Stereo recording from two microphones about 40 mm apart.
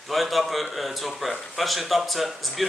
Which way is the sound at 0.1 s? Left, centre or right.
Centre.